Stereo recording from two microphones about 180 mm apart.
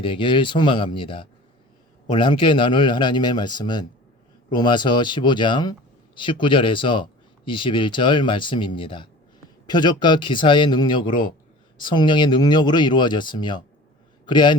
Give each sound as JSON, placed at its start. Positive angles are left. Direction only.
{"t": 0.0, "sound": "speech", "side_deg": 30}
{"t": 11.1, "sound": "a man's voice", "side_deg": 50}
{"t": 11.8, "sound": "a man's voice", "side_deg": 25}